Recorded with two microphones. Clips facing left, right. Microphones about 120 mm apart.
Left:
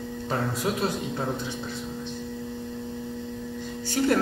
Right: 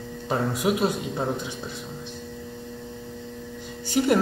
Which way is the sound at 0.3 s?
15° right (ahead or behind).